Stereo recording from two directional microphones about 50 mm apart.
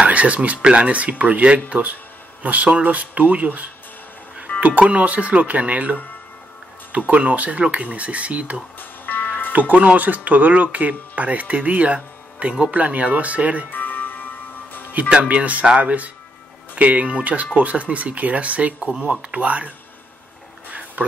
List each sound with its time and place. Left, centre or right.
0.0 s speech: right
8.7 s music: left
9.5 s speech: right
13.7 s music: left
15.0 s speech: centre
20.6 s a sound: right